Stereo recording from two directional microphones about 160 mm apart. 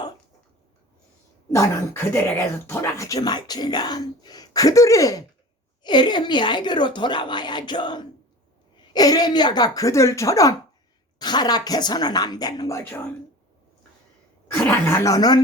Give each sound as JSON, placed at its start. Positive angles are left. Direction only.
{"t": 1.5, "sound": "speech", "side_deg": 20}
{"t": 14.5, "sound": "speech", "side_deg": 15}